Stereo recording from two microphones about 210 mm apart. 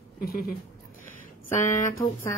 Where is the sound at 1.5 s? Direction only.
35° left (ahead or behind).